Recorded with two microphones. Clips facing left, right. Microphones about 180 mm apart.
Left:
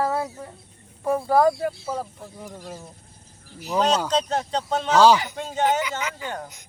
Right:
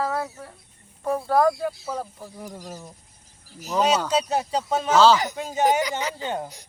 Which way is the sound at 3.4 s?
40° right (ahead or behind).